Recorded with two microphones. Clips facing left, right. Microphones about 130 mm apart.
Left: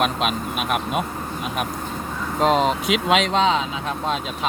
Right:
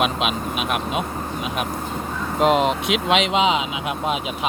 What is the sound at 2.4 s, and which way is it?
Speech, 5° right (ahead or behind).